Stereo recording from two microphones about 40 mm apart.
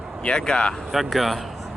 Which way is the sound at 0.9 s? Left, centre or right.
Centre.